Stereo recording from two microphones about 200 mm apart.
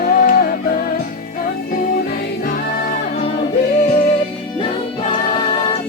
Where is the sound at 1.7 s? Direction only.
45° left (ahead or behind).